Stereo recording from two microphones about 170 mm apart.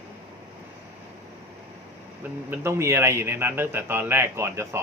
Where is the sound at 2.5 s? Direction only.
15° right (ahead or behind).